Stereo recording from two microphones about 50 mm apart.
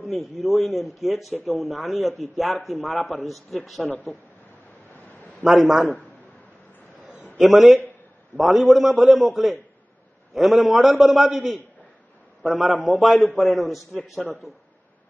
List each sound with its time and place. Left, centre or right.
0.0 s a man's voice: centre
5.4 s a man's voice: centre
7.3 s a man's voice: centre
12.4 s a man's voice: centre
13.0 s a man's voice: centre